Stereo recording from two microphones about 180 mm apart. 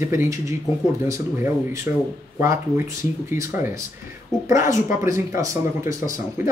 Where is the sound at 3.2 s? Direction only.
15° right (ahead or behind).